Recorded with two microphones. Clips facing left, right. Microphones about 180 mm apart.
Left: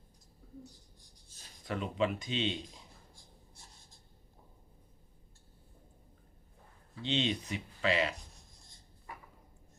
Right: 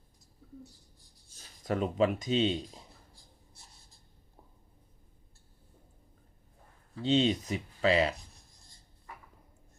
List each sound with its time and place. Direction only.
1.6 s speech: 40° right (ahead or behind)
7.0 s speech: 40° right (ahead or behind)